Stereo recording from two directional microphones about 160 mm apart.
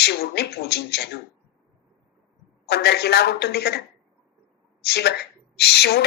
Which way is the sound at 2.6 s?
90° left.